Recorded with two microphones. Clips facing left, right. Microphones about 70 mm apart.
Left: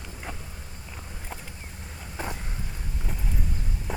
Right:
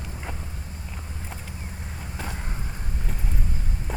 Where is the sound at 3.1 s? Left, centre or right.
Centre.